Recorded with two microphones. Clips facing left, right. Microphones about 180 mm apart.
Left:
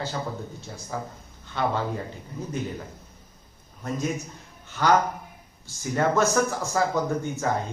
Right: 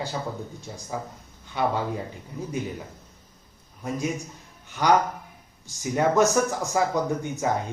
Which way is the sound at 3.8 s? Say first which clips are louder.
Even; 10° right (ahead or behind).